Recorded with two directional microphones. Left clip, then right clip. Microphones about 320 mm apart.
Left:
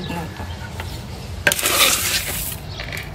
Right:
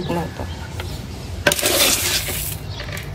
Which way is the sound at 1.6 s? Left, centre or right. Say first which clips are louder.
Even; centre.